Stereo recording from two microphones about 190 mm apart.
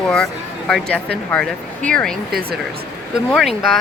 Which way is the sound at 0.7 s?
5° left (ahead or behind).